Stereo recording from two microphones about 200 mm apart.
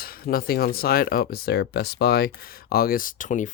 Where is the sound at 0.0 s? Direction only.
45° left (ahead or behind).